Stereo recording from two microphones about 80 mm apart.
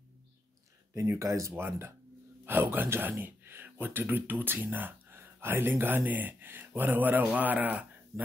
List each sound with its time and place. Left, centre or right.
0.9 s speech: right